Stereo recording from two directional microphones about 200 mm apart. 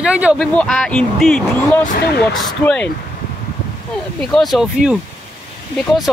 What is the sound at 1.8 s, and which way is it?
Speech, 40° left (ahead or behind).